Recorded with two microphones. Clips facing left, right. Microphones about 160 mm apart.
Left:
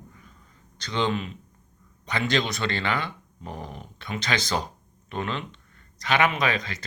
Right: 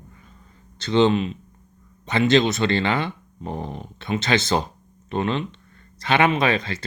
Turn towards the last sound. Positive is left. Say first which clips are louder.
# right 5 dB
turn(degrees=-30)  # may be behind; listen again after turning